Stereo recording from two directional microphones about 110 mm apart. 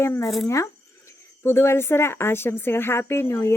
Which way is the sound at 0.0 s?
25° left (ahead or behind).